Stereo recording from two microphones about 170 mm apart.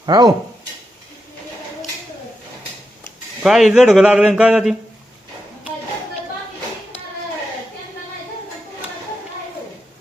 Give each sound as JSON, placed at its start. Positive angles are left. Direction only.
{"t": 0.0, "sound": "speech", "side_deg": -25}
{"t": 3.4, "sound": "a man's voice", "side_deg": 0}